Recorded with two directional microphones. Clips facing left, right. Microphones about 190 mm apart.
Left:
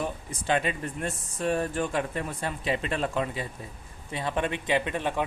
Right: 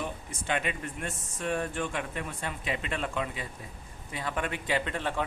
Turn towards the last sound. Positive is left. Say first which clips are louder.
# left 3 dB
turn(degrees=15)  # may be behind; listen again after turning